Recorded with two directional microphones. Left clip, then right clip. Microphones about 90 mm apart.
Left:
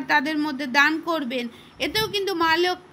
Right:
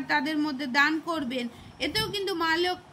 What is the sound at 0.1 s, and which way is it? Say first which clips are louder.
A woman's voice: left 5 dB; 40° left (ahead or behind).